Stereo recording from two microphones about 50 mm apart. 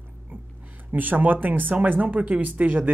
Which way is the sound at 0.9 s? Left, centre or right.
Right.